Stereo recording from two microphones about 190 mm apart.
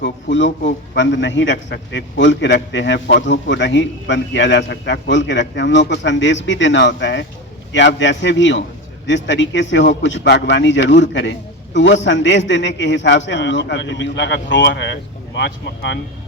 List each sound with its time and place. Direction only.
0.0 s a man's voice: 75° left (ahead or behind)